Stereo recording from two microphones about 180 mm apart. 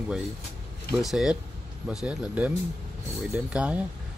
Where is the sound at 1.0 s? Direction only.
5° right (ahead or behind).